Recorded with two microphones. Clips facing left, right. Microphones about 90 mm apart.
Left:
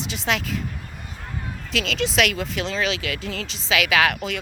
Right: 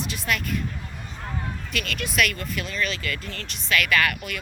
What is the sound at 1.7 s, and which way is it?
Speech, 90° left.